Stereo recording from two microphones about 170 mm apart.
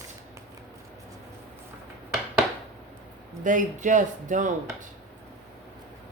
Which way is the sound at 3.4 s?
50° right (ahead or behind).